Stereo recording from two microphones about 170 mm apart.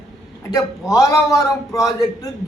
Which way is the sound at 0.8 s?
20° left (ahead or behind).